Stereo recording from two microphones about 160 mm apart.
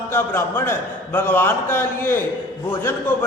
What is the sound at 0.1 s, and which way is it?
A man's voice, 15° left (ahead or behind).